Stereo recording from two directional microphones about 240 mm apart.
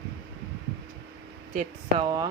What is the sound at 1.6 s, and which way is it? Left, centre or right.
Speech, centre.